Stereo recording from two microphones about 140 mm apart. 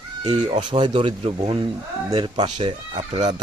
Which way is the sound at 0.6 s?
35° right (ahead or behind).